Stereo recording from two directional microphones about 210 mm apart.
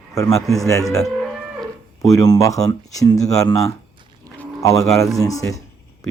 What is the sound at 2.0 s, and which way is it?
Speech, 15° left (ahead or behind).